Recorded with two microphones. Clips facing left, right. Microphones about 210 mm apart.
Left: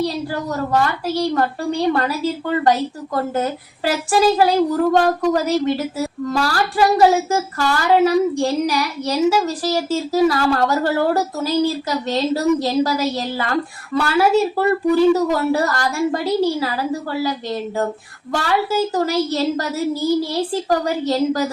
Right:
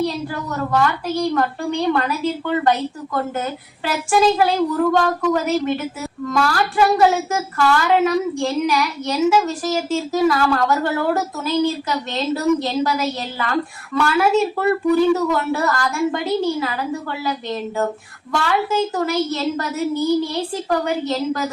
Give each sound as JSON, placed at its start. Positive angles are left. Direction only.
{"t": 0.0, "sound": "speech", "side_deg": 35}
{"t": 18.3, "sound": "speech", "side_deg": 35}